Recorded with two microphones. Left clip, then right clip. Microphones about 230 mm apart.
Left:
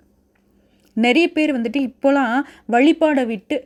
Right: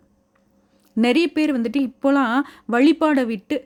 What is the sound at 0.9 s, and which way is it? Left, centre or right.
Speech, centre.